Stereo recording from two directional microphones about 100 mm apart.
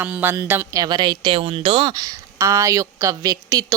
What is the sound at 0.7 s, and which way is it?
Speech, 40° right (ahead or behind).